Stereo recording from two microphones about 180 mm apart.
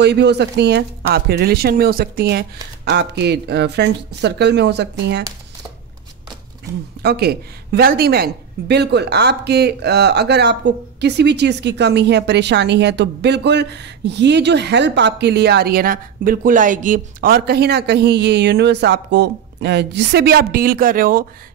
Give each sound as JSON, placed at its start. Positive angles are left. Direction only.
{"t": 0.0, "sound": "speech", "side_deg": -70}
{"t": 2.8, "sound": "speech", "side_deg": -70}
{"t": 7.0, "sound": "speech", "side_deg": -60}